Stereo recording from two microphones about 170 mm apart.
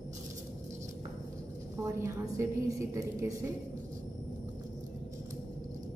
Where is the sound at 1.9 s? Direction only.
15° right (ahead or behind).